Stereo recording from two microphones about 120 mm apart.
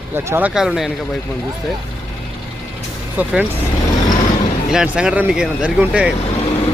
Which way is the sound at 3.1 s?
10° right (ahead or behind).